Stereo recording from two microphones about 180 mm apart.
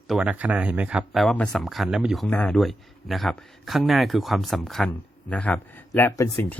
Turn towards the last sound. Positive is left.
turn(degrees=15)  # may be behind; listen again after turning